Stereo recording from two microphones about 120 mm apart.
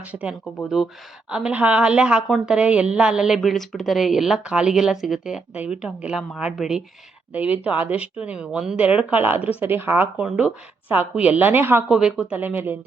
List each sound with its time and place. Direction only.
0.1 s a woman's voice: 10° right (ahead or behind)
2.6 s a woman's voice: 10° right (ahead or behind)
11.9 s a woman's voice: 5° right (ahead or behind)